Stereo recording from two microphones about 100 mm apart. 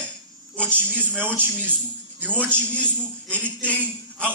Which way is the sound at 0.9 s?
20° right (ahead or behind).